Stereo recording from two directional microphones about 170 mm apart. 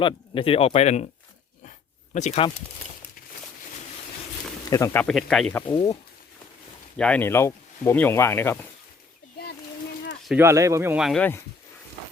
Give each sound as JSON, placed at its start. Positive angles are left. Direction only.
{"t": 0.0, "sound": "speech", "side_deg": 30}
{"t": 2.1, "sound": "speech", "side_deg": 45}
{"t": 4.7, "sound": "speech", "side_deg": 15}
{"t": 5.0, "sound": "speech", "side_deg": 5}
{"t": 5.6, "sound": "speech", "side_deg": 25}
{"t": 6.9, "sound": "speech", "side_deg": 5}
{"t": 10.2, "sound": "speech", "side_deg": -15}
{"t": 11.0, "sound": "speech", "side_deg": 0}